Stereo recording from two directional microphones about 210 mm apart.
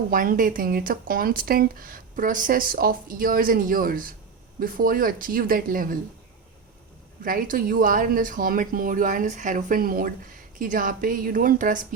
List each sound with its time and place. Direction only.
0.1 s speech: 40° right (ahead or behind)
7.2 s speech: 40° right (ahead or behind)